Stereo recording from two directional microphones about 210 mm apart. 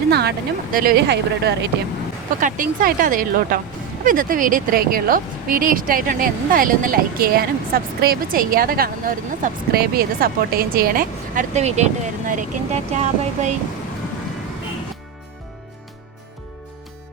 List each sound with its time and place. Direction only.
0.1 s speech: 50° right (ahead or behind)
2.4 s speech: 40° right (ahead or behind)